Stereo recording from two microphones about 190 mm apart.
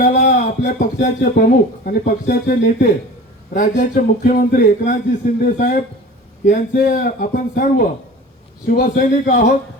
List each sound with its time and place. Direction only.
0.1 s speech: 40° left (ahead or behind)